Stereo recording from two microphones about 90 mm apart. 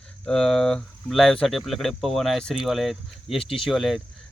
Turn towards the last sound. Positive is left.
turn(degrees=0)  # may be behind; listen again after turning